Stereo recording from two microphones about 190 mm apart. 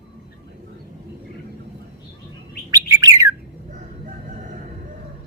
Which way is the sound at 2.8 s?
15° right (ahead or behind).